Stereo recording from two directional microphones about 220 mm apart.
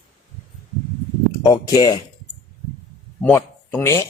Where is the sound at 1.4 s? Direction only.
15° left (ahead or behind).